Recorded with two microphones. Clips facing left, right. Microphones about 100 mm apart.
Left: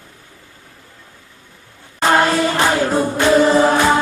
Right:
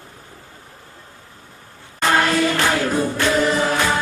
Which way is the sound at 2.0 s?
25° left (ahead or behind).